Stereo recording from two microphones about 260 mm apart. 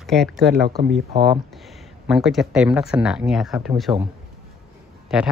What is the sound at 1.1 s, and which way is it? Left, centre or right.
Speech, centre.